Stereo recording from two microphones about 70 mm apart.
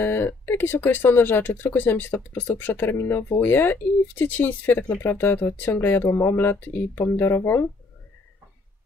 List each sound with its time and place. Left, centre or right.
0.0 s speech: left